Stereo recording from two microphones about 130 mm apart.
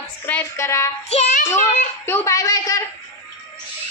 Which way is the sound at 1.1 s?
50° left (ahead or behind).